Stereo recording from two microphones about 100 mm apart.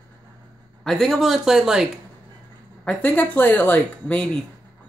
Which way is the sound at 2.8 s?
15° left (ahead or behind).